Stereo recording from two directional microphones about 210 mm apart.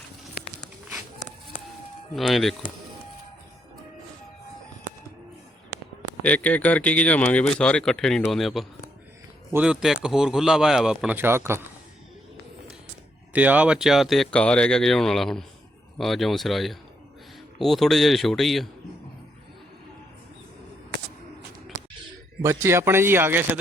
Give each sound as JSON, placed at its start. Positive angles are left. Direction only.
{"t": 2.1, "sound": "speech", "side_deg": 0}
{"t": 6.2, "sound": "speech", "side_deg": 5}
{"t": 13.3, "sound": "speech", "side_deg": -5}
{"t": 22.4, "sound": "speech", "side_deg": -15}